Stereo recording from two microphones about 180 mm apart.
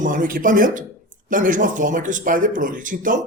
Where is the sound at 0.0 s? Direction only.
50° right (ahead or behind).